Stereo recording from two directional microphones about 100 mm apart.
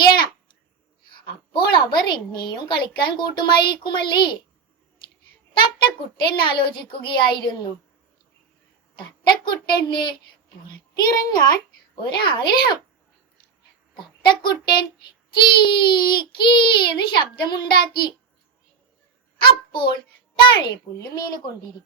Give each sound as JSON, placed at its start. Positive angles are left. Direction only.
{"t": 1.1, "sound": "a woman's voice", "side_deg": 50}
{"t": 5.5, "sound": "a child's voice", "side_deg": 55}
{"t": 9.0, "sound": "a child's voice", "side_deg": 50}
{"t": 13.9, "sound": "a child's voice", "side_deg": 50}
{"t": 19.4, "sound": "a child's voice", "side_deg": 55}
{"t": 21.2, "sound": "speech", "side_deg": 40}